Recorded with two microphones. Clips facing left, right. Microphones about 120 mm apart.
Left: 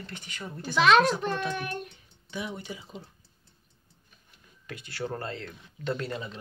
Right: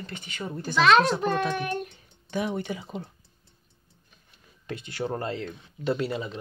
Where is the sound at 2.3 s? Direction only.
55° right (ahead or behind).